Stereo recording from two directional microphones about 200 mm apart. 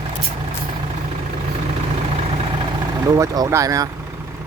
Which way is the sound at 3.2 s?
15° right (ahead or behind).